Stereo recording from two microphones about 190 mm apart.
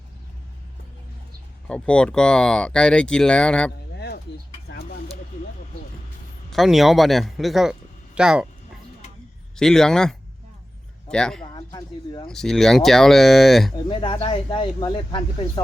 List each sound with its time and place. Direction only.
1.6 s speech: 5° left (ahead or behind)
3.9 s a sound: 60° left (ahead or behind)
6.5 s speech: centre (ahead or behind)
9.6 s speech: centre (ahead or behind)
11.5 s a sound: 20° left (ahead or behind)
12.3 s speech: centre (ahead or behind)
13.8 s speech: 25° left (ahead or behind)